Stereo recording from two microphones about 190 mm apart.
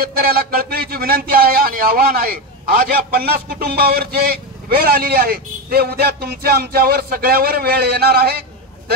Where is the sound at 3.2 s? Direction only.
55° right (ahead or behind).